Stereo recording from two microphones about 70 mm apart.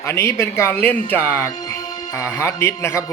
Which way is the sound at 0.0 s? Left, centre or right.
Left.